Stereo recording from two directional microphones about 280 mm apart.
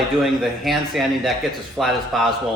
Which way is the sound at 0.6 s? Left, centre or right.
Centre.